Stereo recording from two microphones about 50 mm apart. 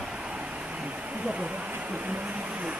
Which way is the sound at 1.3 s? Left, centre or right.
Right.